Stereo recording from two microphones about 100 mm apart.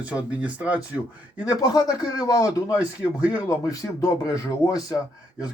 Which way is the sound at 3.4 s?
35° left (ahead or behind).